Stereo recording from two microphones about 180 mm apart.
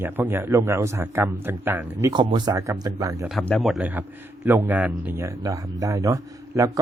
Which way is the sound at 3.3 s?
Centre (ahead or behind).